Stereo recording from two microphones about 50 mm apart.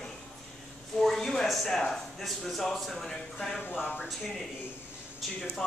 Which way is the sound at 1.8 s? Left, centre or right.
Centre.